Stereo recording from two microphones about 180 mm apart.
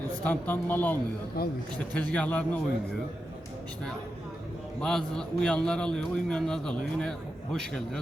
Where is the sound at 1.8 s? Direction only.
5° left (ahead or behind).